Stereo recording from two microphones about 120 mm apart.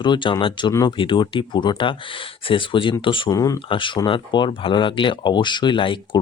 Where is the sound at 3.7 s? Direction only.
45° left (ahead or behind).